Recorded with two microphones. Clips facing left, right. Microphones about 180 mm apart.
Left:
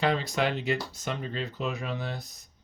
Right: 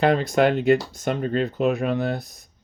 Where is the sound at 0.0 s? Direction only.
55° right (ahead or behind).